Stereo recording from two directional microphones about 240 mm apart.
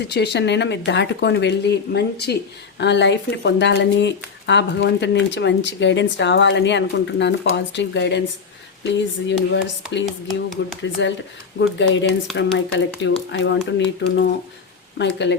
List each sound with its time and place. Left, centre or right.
0.0 s speech: left
10.2 s speech: centre
11.8 s speech: left